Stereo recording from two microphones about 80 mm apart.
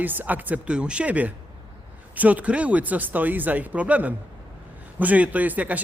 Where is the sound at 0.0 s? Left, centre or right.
Right.